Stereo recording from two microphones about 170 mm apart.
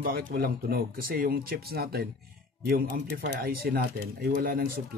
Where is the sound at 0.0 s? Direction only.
60° right (ahead or behind).